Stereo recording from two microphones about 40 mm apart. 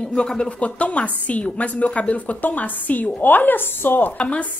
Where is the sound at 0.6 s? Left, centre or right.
Left.